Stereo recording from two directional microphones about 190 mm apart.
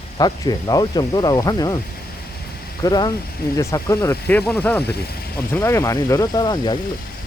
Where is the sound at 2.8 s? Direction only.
20° left (ahead or behind).